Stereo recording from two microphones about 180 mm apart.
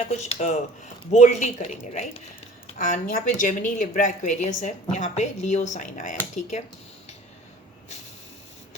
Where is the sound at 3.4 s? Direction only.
45° left (ahead or behind).